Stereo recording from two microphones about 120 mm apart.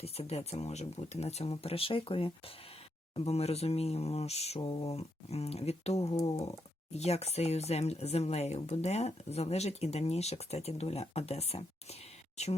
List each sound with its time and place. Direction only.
0.0 s speech: 55° left (ahead or behind)
3.2 s speech: 60° left (ahead or behind)